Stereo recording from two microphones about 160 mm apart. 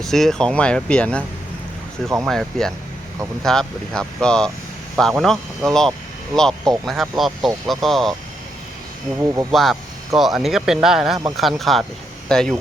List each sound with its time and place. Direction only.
0.0 s speech: centre (ahead or behind)
2.2 s speech: centre (ahead or behind)
9.1 s speech: 15° right (ahead or behind)
9.5 s speech: centre (ahead or behind)